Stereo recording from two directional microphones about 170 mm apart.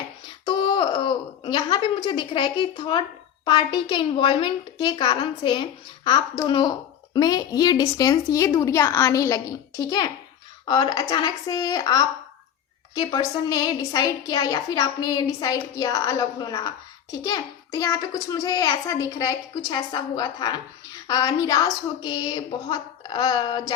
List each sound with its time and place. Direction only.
0.4 s wail: 30° left (ahead or behind)
3.4 s a woman's voice: 30° left (ahead or behind)